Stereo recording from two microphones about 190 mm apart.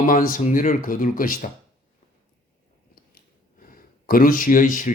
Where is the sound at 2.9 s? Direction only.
50° left (ahead or behind).